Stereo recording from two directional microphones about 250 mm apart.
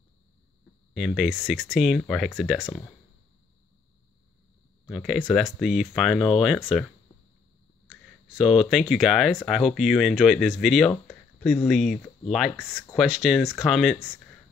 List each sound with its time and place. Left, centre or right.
0.9 s speech: centre
4.8 s speech: centre
7.9 s speech: centre